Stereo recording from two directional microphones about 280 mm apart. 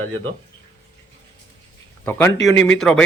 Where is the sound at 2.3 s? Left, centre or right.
Left.